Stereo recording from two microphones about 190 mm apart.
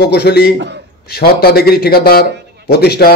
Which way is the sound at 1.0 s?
55° left (ahead or behind).